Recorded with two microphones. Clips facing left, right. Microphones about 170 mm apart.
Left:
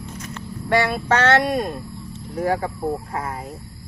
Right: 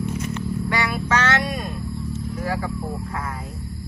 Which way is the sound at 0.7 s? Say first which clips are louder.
Left 6 dB; 55° left (ahead or behind).